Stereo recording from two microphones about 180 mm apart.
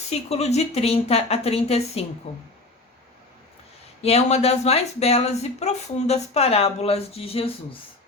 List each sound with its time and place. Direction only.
0.1 s speech: 35° left (ahead or behind)
4.0 s speech: 35° left (ahead or behind)